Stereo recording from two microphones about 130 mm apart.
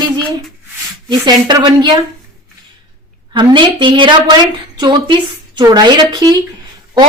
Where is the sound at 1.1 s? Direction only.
30° right (ahead or behind).